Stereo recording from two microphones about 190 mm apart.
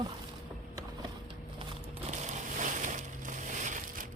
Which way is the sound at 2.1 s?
40° right (ahead or behind).